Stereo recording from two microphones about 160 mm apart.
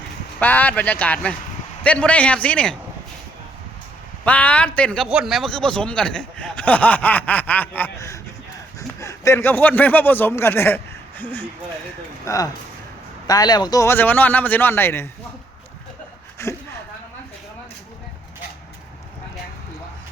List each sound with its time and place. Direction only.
0.3 s speech: 10° left (ahead or behind)
4.2 s speech: 10° left (ahead or behind)
5.0 s speech: 5° right (ahead or behind); by 15.1 s 15° left (ahead or behind)
16.4 s a sound: 15° left (ahead or behind)